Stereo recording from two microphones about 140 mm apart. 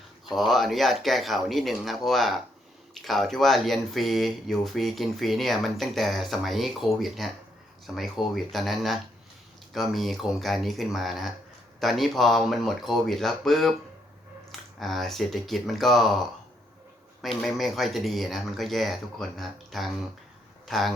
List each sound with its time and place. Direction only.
0.3 s speech: centre (ahead or behind)
14.8 s speech: centre (ahead or behind)
17.2 s speech: centre (ahead or behind)